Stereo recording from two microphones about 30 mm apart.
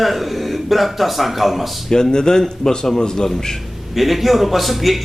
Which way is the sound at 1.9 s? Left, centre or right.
Left.